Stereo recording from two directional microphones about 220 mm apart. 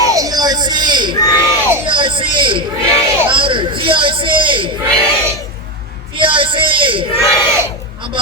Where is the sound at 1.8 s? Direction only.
25° right (ahead or behind).